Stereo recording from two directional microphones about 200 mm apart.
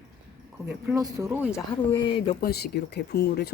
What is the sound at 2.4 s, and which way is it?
Speech, 55° left (ahead or behind).